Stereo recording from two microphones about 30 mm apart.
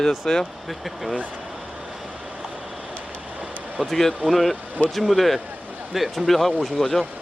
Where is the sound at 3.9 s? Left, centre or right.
Centre.